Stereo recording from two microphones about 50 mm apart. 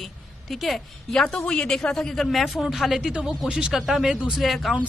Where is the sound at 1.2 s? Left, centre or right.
Centre.